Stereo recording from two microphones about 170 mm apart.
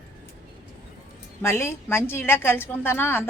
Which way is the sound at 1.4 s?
15° left (ahead or behind).